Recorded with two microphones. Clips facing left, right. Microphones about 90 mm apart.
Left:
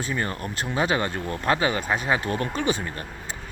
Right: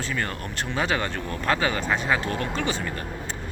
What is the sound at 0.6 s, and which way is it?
Speech, 10° left (ahead or behind).